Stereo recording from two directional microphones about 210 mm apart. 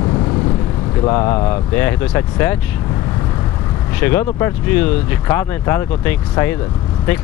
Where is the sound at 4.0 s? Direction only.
10° left (ahead or behind).